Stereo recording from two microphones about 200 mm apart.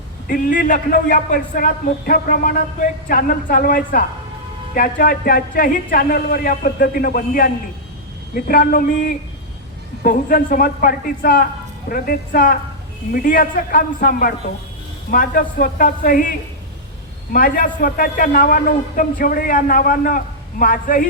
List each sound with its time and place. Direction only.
0.3 s speech: 45° left (ahead or behind)
17.3 s speech: 45° left (ahead or behind)